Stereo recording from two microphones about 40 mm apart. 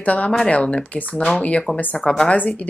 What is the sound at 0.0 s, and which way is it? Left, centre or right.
Speech, left.